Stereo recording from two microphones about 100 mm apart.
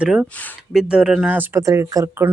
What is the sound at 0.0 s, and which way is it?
Speech, 10° right (ahead or behind).